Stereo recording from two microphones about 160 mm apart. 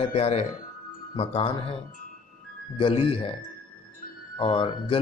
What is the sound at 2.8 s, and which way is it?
Speech, 35° left (ahead or behind).